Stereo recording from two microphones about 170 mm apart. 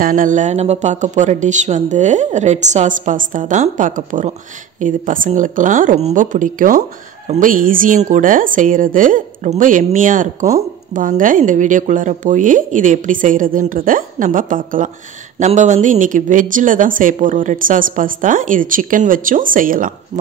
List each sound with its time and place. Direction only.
0.0 s speech: 50° right (ahead or behind)